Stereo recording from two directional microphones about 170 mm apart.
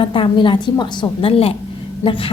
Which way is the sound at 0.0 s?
30° left (ahead or behind).